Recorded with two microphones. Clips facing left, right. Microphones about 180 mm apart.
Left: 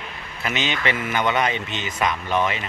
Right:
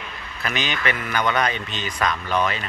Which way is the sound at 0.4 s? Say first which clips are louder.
Left 1 dB; 25° left (ahead or behind).